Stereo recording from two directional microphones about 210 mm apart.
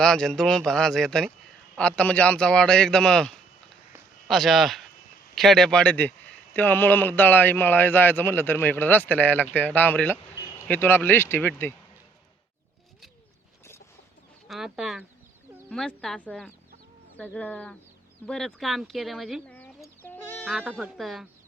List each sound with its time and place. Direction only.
0.0 s a man's voice: 5° left (ahead or behind)
14.4 s a man's voice: centre (ahead or behind)
20.4 s a man's voice: 5° right (ahead or behind)